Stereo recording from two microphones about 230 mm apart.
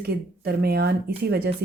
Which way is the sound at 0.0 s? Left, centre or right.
Right.